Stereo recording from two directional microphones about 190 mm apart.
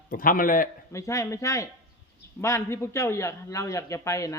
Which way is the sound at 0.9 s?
15° left (ahead or behind).